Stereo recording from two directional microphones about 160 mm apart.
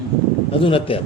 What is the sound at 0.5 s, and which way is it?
Speech, 35° left (ahead or behind).